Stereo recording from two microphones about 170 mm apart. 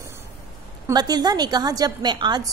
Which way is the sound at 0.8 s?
25° right (ahead or behind).